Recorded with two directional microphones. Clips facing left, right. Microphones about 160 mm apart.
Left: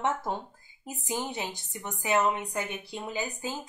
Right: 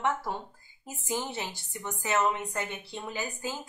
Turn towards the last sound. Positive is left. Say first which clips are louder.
# left 1 dB
turn(degrees=15)  # may be behind; listen again after turning